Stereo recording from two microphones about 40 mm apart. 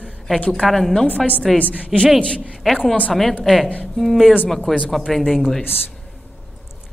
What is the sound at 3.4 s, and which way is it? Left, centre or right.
Speech, centre.